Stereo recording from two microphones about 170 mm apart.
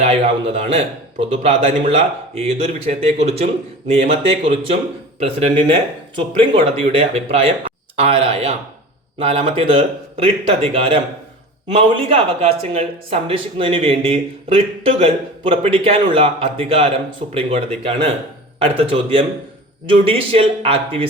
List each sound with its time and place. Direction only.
0.0 s speech: 35° right (ahead or behind)